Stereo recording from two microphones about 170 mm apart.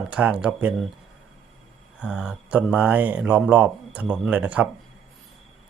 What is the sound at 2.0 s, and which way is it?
Speech, 5° right (ahead or behind).